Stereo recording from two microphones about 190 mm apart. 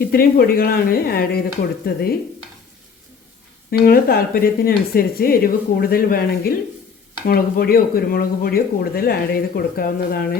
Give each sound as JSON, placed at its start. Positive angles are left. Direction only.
{"t": 0.1, "sound": "speech", "side_deg": 55}
{"t": 3.7, "sound": "speech", "side_deg": 55}